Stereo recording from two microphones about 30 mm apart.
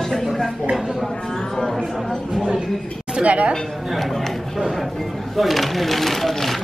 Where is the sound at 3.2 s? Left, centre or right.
Right.